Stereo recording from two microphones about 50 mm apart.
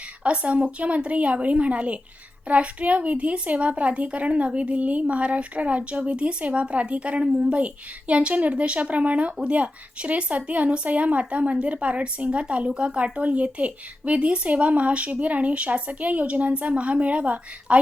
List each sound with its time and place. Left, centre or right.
0.2 s speech: right